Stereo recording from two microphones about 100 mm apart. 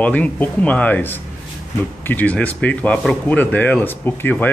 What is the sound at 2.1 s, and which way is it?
Speech, 15° left (ahead or behind).